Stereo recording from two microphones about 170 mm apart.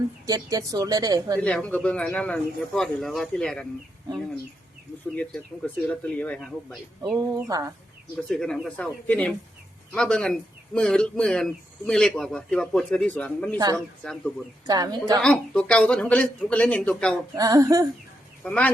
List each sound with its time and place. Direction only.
0.3 s speech: 20° right (ahead or behind)
1.5 s a man's voice: 5° left (ahead or behind)
5.1 s speech: 5° left (ahead or behind)
7.3 s speech: 20° right (ahead or behind)
8.1 s a man's voice: 5° left (ahead or behind)
14.7 s speech: 20° right (ahead or behind)
15.2 s speech: 5° left (ahead or behind)
17.3 s speech: 20° right (ahead or behind)
18.4 s speech: 10° left (ahead or behind)